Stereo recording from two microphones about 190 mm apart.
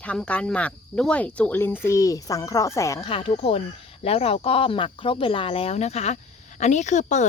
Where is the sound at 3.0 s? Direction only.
30° left (ahead or behind).